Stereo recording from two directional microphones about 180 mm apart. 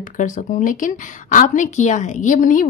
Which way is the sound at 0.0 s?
45° left (ahead or behind).